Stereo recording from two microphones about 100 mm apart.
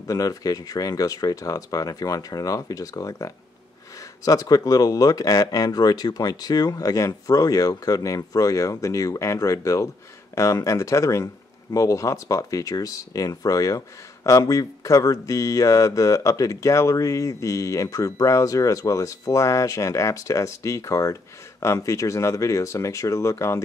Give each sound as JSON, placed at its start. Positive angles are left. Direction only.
{"t": 0.0, "sound": "speech", "side_deg": 35}